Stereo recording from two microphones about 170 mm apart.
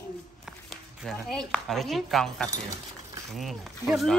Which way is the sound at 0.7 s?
Centre (ahead or behind).